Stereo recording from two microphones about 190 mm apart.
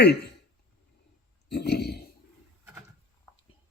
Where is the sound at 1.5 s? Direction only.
60° left (ahead or behind).